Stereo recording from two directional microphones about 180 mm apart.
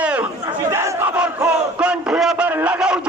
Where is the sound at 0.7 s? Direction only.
15° right (ahead or behind).